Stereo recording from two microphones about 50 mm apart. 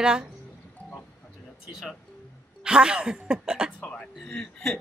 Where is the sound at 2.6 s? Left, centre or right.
Centre.